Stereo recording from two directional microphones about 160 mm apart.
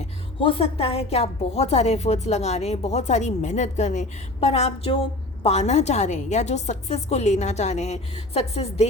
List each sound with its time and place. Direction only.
0.3 s a woman's voice: 35° left (ahead or behind)